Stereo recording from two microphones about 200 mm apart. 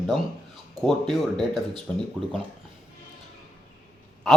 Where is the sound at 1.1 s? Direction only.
Centre (ahead or behind).